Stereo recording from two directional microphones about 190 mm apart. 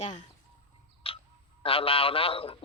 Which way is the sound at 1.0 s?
30° left (ahead or behind).